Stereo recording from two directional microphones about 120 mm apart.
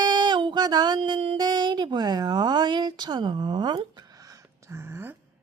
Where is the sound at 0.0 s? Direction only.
40° right (ahead or behind).